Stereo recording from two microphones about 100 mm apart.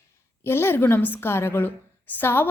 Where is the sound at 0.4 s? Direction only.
25° left (ahead or behind).